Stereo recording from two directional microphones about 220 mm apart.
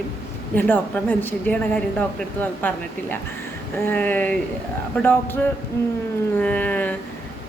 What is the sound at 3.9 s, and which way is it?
Speech, 10° left (ahead or behind).